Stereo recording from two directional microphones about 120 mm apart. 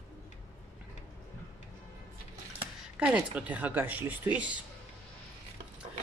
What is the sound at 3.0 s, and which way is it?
Speech, 10° right (ahead or behind).